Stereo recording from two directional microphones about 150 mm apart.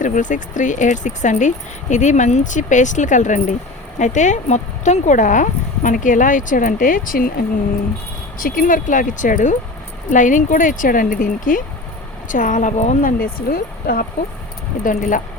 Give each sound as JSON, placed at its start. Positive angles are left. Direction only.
{"t": 0.0, "sound": "speech", "side_deg": 60}
{"t": 14.8, "sound": "speech", "side_deg": 60}